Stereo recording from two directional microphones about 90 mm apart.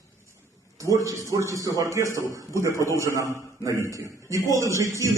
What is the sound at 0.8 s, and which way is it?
A man's voice, 35° right (ahead or behind).